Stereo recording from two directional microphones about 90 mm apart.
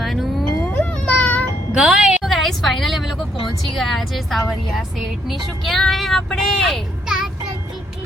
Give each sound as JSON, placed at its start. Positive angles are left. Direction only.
{"t": 0.0, "sound": "music", "side_deg": 0}
{"t": 0.7, "sound": "a sound", "side_deg": 20}
{"t": 1.7, "sound": "a woman's voice", "side_deg": -5}